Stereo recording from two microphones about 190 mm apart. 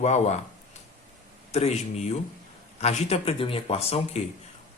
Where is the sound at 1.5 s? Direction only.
35° left (ahead or behind).